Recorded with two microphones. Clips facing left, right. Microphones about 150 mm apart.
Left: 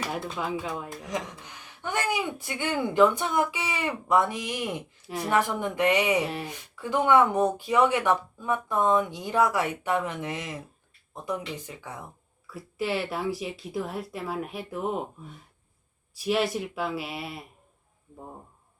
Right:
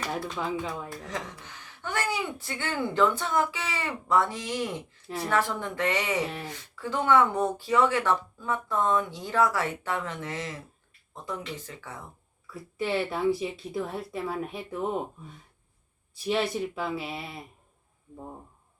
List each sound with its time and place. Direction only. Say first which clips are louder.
0.3 s speech: even; 5° left (ahead or behind)
0.9 s speech: left 3 dB; 20° left (ahead or behind)
12.5 s speech: even; 5° left (ahead or behind)
16.2 s speech: left 1 dB; 5° left (ahead or behind)